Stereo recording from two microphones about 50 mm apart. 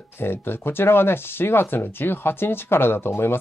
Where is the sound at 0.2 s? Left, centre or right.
Left.